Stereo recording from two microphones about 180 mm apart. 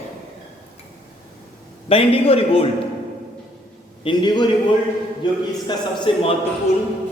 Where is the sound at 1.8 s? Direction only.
30° left (ahead or behind).